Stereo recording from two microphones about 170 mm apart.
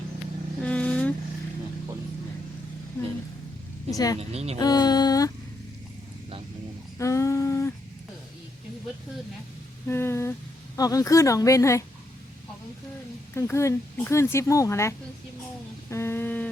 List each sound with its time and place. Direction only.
0.6 s vehicle: 5° left (ahead or behind)
3.9 s speech: 20° left (ahead or behind)
4.2 s speech: 35° right (ahead or behind)
4.6 s speech: 25° left (ahead or behind)
7.0 s humming: 20° left (ahead or behind)
9.8 s speech: 15° left (ahead or behind)
13.3 s speech: 15° left (ahead or behind)
15.9 s a sound: 15° left (ahead or behind)